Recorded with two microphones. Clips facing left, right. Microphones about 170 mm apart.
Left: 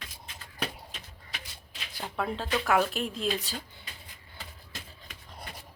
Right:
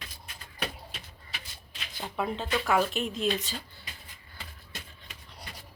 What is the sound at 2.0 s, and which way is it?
A woman's voice, centre (ahead or behind).